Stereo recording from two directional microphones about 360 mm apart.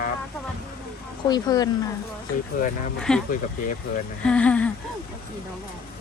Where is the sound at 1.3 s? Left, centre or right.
Centre.